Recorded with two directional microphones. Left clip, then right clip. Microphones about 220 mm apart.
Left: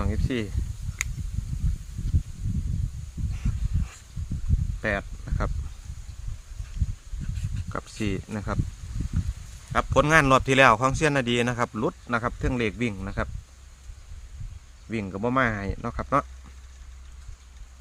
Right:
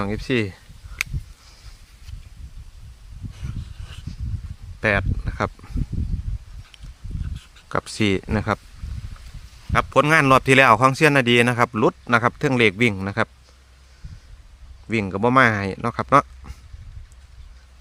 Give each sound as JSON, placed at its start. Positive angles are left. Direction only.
{"t": 0.0, "sound": "speech", "side_deg": -50}
{"t": 4.8, "sound": "a sound", "side_deg": -55}
{"t": 7.7, "sound": "speech", "side_deg": -55}
{"t": 9.7, "sound": "speech", "side_deg": -35}
{"t": 14.8, "sound": "speech", "side_deg": -50}